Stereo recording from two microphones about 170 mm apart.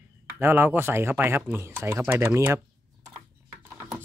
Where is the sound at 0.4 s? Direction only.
10° right (ahead or behind).